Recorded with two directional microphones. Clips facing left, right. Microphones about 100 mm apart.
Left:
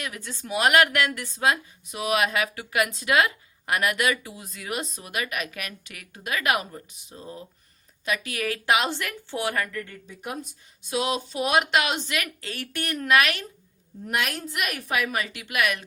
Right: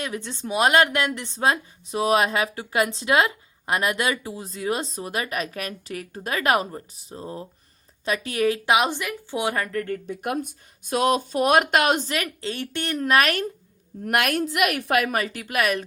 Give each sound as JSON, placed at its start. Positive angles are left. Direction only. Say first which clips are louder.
{"t": 0.0, "sound": "a woman's voice", "louder": "right 5 dB", "side_deg": -25}
{"t": 9.7, "sound": "speech", "louder": "right 9 dB", "side_deg": -50}
{"t": 14.0, "sound": "a woman's voice", "louder": "right 6 dB", "side_deg": -65}